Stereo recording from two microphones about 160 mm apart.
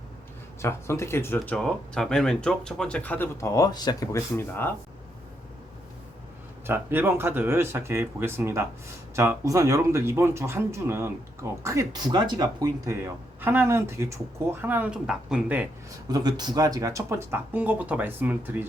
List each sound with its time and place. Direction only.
0.6 s speech: 15° left (ahead or behind)
1.5 s speech: 5° left (ahead or behind)
6.7 s speech: 15° right (ahead or behind)
16.0 s speech: 25° right (ahead or behind)